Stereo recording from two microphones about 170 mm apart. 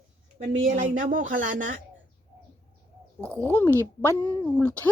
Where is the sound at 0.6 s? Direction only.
50° right (ahead or behind).